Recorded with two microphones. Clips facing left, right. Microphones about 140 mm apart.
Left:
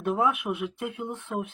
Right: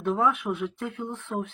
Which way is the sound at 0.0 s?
5° left (ahead or behind).